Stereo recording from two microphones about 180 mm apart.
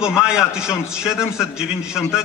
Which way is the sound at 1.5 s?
5° right (ahead or behind).